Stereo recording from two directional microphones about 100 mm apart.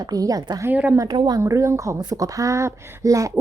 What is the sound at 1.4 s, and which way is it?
A woman's voice, 30° right (ahead or behind).